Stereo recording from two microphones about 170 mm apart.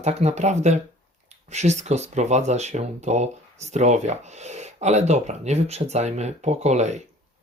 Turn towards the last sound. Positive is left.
turn(degrees=-40)  # may be behind; listen again after turning